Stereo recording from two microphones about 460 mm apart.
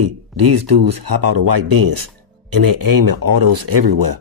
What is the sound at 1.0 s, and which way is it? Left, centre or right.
Speech, right.